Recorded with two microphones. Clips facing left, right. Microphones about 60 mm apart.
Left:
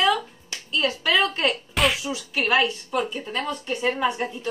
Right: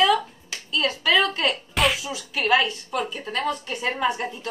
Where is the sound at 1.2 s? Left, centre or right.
Left.